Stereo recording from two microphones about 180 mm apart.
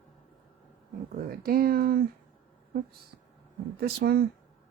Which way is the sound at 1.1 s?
55° right (ahead or behind).